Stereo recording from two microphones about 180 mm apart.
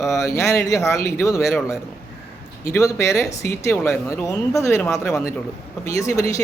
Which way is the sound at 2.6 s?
15° left (ahead or behind).